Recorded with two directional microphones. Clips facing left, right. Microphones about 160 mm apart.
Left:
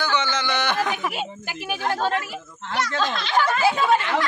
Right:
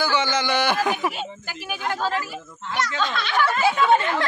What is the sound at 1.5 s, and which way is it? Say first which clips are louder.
Speech: left 3 dB; 20° left (ahead or behind).